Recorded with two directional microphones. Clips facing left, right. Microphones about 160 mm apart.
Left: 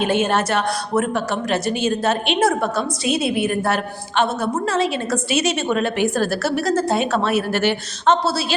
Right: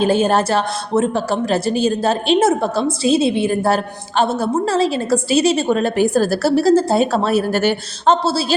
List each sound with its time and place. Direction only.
0.0 s a woman's voice: 35° right (ahead or behind)